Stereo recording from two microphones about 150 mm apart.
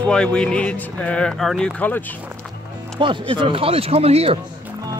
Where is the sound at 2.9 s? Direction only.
35° right (ahead or behind).